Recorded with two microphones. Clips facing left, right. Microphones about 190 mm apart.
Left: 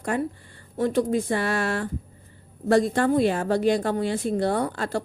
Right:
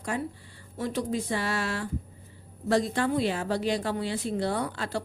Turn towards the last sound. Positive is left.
turn(degrees=50)  # may be behind; listen again after turning